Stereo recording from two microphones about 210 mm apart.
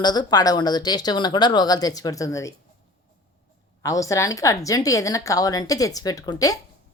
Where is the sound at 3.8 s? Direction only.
15° left (ahead or behind).